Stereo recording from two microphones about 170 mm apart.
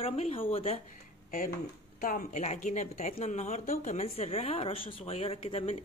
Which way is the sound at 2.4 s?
45° left (ahead or behind).